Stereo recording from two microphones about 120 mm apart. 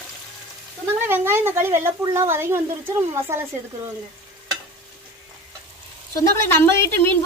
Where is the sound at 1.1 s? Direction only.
20° right (ahead or behind).